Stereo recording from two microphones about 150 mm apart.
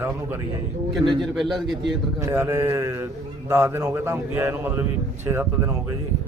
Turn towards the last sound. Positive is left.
turn(degrees=-15)  # may be behind; listen again after turning